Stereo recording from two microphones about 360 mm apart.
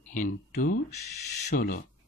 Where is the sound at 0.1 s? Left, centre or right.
Left.